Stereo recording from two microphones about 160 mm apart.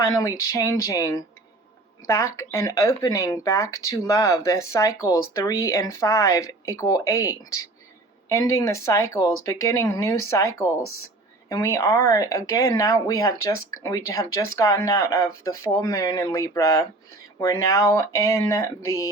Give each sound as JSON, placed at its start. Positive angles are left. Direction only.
{"t": 0.0, "sound": "speech", "side_deg": 20}